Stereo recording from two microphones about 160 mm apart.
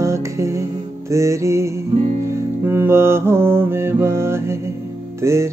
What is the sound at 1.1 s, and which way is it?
Mantra, 20° right (ahead or behind).